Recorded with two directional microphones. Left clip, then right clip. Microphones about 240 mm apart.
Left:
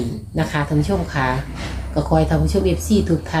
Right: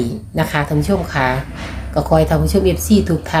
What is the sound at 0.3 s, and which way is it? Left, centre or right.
A woman's voice, right.